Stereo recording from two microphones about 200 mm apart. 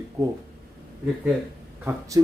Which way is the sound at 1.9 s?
15° right (ahead or behind).